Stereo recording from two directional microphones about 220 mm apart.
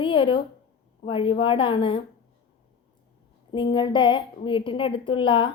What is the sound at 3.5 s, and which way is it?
A woman's voice, 20° left (ahead or behind).